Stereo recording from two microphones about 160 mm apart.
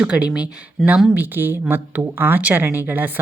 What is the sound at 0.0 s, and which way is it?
Speech, 5° right (ahead or behind).